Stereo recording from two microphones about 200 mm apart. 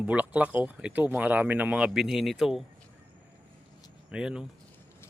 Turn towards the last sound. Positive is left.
turn(degrees=-5)  # may be behind; listen again after turning